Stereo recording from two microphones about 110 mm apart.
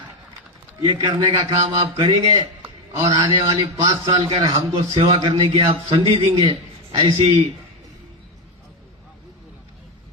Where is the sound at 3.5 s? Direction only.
30° right (ahead or behind).